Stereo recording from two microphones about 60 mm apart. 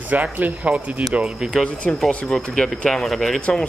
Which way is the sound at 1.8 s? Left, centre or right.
Centre.